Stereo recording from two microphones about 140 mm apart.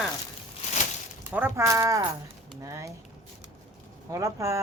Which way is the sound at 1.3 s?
15° right (ahead or behind).